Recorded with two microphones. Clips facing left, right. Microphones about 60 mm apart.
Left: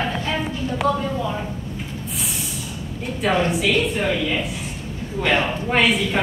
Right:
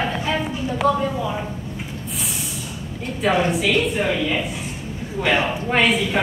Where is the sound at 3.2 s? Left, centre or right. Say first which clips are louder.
Right 1 dB; centre.